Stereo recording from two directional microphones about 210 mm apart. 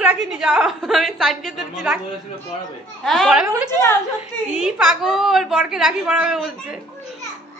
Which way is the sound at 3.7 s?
10° left (ahead or behind).